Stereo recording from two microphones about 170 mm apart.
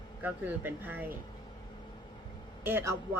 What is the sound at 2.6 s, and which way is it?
Speech, 15° right (ahead or behind).